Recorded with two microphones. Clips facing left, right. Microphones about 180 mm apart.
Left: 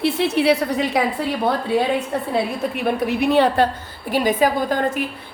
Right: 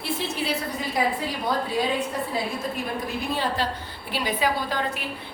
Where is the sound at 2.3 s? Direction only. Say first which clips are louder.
Left 6 dB; 70° left (ahead or behind).